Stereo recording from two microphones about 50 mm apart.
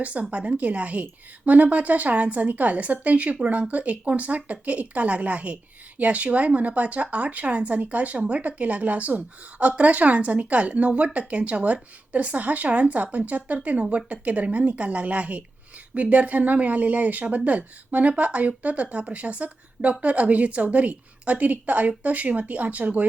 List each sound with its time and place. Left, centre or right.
0.0 s speech: right